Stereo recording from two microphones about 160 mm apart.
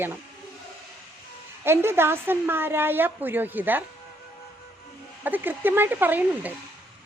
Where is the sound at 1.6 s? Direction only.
15° right (ahead or behind).